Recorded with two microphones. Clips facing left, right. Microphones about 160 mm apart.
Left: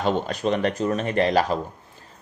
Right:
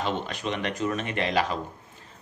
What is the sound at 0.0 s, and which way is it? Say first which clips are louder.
Speech: left 6 dB; 40° left (ahead or behind).